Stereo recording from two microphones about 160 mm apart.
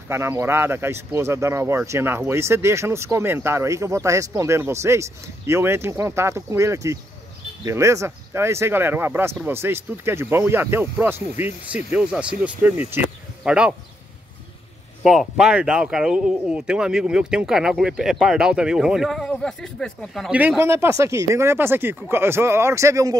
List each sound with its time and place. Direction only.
0.1 s speech: 15° right (ahead or behind)
15.0 s speech: 5° right (ahead or behind)
20.2 s speech: 10° right (ahead or behind)